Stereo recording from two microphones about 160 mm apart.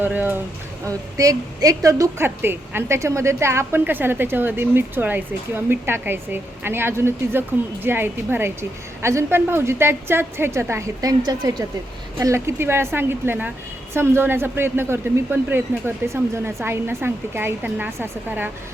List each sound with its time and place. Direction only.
0.0 s a woman's voice: 10° right (ahead or behind)